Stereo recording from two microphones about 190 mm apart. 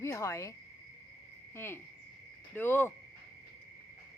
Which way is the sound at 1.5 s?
10° left (ahead or behind).